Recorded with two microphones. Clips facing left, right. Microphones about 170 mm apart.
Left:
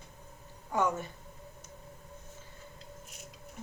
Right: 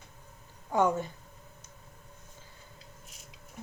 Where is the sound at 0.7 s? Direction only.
20° right (ahead or behind).